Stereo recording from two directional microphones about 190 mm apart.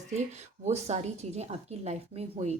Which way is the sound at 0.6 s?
35° right (ahead or behind).